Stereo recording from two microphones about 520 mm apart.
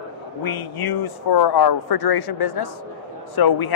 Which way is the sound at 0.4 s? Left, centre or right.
Left.